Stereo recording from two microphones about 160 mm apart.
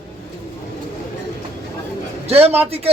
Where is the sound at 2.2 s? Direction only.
40° right (ahead or behind).